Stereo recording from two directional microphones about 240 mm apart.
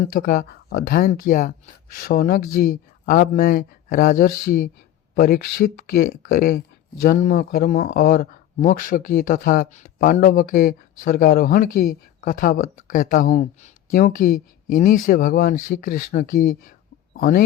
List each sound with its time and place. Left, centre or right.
0.0 s speech: left